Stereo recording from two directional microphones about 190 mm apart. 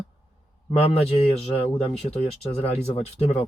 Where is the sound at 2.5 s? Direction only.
30° left (ahead or behind).